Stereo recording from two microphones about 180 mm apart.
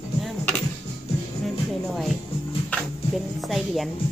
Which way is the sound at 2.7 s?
10° left (ahead or behind).